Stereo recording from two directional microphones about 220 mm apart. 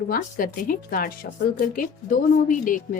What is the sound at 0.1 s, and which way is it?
A woman's voice, 40° left (ahead or behind).